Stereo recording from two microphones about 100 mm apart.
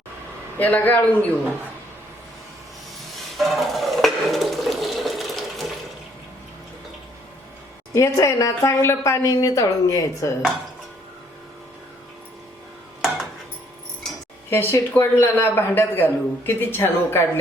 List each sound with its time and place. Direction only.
0.6 s a man's voice: 15° left (ahead or behind)
3.3 s water: centre (ahead or behind)
7.9 s a woman's voice: 30° left (ahead or behind)
14.5 s a woman's voice: 25° left (ahead or behind)